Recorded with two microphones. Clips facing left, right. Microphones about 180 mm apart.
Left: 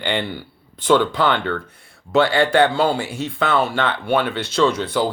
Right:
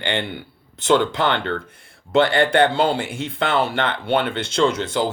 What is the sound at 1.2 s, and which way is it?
Speech, 20° right (ahead or behind).